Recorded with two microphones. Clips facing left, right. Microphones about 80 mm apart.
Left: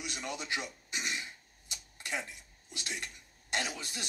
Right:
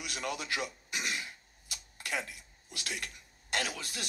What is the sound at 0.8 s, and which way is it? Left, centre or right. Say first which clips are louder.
Throat clearing: right 1 dB; right.